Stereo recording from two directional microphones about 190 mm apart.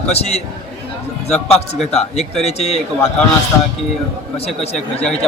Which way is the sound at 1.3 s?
Centre (ahead or behind).